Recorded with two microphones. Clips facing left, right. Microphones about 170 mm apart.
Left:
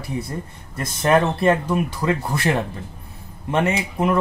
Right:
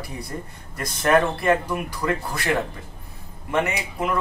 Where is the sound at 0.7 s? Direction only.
25° left (ahead or behind).